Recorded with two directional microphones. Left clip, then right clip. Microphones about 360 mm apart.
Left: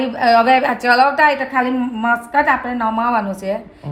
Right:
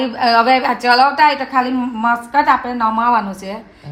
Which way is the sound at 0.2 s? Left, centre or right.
Centre.